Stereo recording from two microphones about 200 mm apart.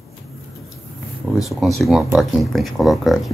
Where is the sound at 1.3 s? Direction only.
Centre (ahead or behind).